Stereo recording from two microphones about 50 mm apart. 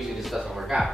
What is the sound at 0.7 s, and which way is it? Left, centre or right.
Speech, centre.